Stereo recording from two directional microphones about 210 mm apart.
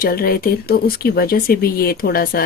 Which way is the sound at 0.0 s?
45° left (ahead or behind).